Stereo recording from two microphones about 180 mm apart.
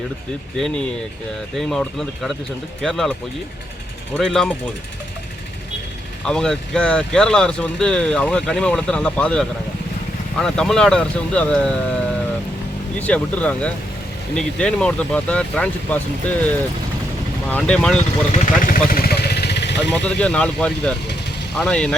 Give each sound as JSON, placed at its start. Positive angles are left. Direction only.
{"t": 1.5, "sound": "speech", "side_deg": 0}
{"t": 6.2, "sound": "speech", "side_deg": 5}
{"t": 18.3, "sound": "vehicle", "side_deg": 50}
{"t": 20.1, "sound": "speech", "side_deg": 5}